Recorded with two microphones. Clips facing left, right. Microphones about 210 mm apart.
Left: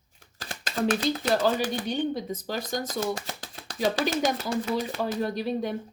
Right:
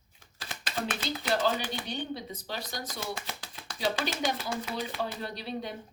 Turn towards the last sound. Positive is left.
turn(degrees=45)  # may be behind; listen again after turning